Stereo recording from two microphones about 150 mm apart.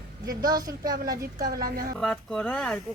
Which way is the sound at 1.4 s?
90° right.